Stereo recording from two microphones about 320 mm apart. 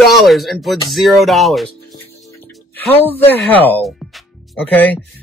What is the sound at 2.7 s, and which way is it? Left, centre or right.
Music, centre.